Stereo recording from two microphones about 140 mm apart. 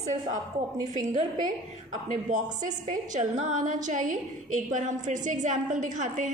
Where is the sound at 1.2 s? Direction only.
65° right (ahead or behind).